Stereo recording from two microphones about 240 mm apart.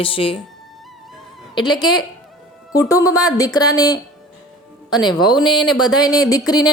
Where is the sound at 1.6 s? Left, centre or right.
Centre.